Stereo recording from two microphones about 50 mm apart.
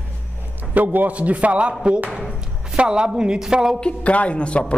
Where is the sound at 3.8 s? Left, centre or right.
Left.